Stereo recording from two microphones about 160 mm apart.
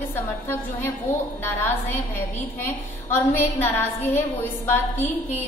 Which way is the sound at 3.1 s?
15° left (ahead or behind).